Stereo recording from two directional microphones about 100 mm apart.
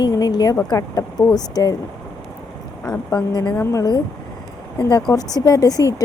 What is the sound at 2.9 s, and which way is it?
Speech, 40° left (ahead or behind).